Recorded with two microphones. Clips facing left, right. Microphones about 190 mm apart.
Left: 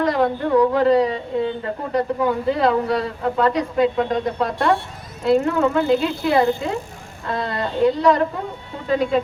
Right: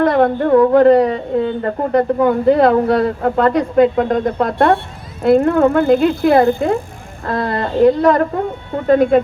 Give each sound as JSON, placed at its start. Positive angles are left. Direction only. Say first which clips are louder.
{"t": 0.0, "sound": "speech", "louder": "right 6 dB", "side_deg": -55}